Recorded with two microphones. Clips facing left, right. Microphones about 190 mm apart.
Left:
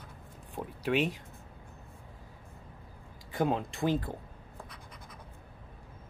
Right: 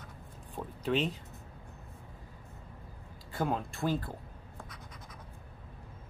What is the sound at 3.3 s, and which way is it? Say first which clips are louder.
Speech: left 3 dB; 20° left (ahead or behind).